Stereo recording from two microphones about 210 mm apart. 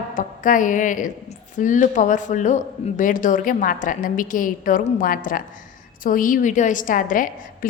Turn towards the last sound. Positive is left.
turn(degrees=40)  # may be behind; listen again after turning